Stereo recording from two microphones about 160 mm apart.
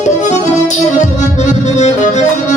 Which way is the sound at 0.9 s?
45° left (ahead or behind).